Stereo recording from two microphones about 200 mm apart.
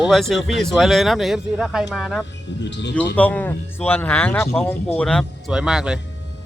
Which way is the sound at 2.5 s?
60° left (ahead or behind).